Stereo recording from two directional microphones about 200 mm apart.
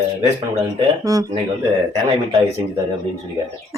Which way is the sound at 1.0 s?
15° right (ahead or behind).